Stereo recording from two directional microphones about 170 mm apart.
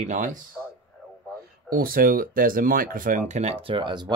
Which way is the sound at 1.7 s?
60° right (ahead or behind).